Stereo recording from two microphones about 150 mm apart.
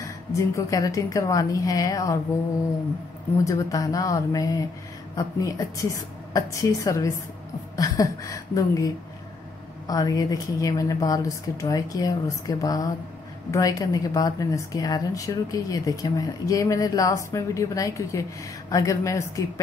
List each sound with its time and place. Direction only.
0.0 s a woman's voice: 20° left (ahead or behind)
3.4 s a woman's voice: 20° left (ahead or behind)